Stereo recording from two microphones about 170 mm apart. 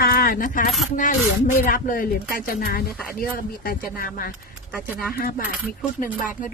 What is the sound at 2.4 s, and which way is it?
Keys jangling, 60° left (ahead or behind).